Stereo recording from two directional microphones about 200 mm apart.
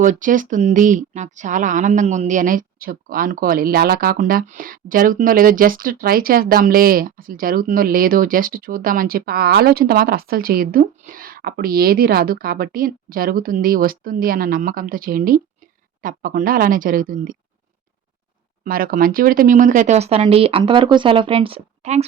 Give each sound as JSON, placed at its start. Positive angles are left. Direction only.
{"t": 0.0, "sound": "speech", "side_deg": -40}
{"t": 18.6, "sound": "speech", "side_deg": -45}